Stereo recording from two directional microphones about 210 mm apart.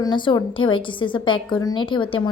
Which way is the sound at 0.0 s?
20° left (ahead or behind).